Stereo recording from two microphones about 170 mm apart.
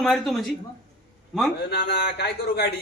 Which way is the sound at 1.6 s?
75° left (ahead or behind).